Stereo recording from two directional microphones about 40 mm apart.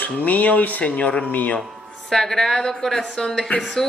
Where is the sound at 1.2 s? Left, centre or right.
Left.